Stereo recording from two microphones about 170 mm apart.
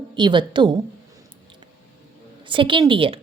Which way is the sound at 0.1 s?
25° right (ahead or behind).